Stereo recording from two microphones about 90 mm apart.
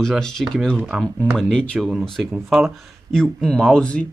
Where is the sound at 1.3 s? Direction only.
5° left (ahead or behind).